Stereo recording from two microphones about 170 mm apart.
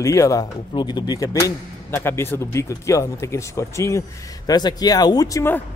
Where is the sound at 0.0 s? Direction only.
20° left (ahead or behind).